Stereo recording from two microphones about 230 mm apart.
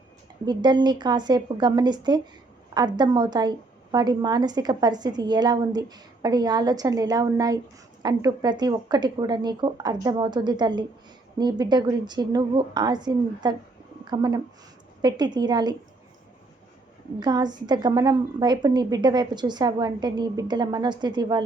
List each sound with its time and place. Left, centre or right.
0.4 s a woman's voice: centre
17.2 s a woman's voice: centre